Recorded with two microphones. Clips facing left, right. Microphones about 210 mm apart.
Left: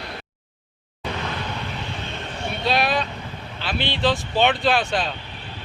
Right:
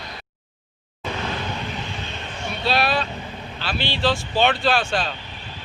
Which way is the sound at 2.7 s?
20° left (ahead or behind).